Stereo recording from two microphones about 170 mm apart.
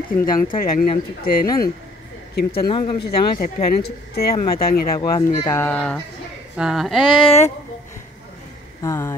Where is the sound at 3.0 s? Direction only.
55° left (ahead or behind).